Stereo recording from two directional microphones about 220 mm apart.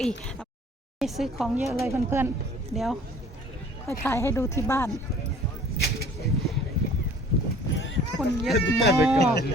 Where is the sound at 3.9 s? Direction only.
10° left (ahead or behind).